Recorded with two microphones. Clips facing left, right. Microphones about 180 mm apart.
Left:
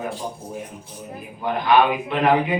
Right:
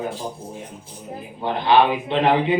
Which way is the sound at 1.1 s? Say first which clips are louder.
Even; 30° right (ahead or behind).